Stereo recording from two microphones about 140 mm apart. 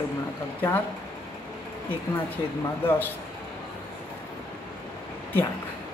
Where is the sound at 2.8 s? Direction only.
10° left (ahead or behind).